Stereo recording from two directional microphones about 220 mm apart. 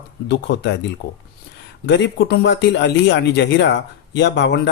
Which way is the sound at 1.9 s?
50° left (ahead or behind).